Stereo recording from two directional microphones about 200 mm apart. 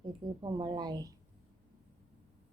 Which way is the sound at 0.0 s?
20° right (ahead or behind).